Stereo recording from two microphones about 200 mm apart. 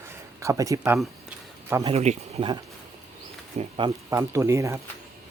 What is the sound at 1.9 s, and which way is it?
Speech, 35° right (ahead or behind).